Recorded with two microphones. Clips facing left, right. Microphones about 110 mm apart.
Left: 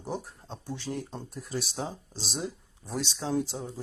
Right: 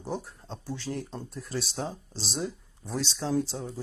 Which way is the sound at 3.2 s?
20° left (ahead or behind).